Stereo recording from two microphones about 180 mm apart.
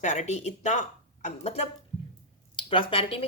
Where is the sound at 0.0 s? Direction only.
40° left (ahead or behind).